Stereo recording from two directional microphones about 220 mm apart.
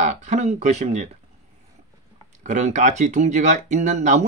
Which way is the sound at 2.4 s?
35° right (ahead or behind).